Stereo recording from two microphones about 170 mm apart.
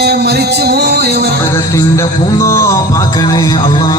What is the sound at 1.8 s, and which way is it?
Music, 20° left (ahead or behind).